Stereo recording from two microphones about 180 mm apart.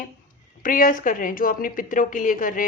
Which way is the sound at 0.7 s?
50° left (ahead or behind).